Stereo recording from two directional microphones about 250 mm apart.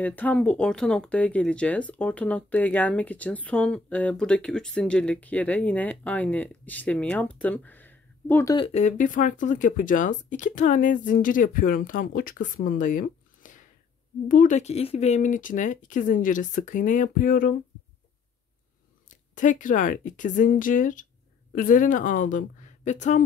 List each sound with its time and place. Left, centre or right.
0.0 s speech: centre
8.5 s speech: left
19.0 s speech: left